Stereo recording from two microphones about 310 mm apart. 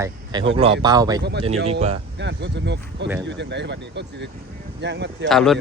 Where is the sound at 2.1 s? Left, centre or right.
Right.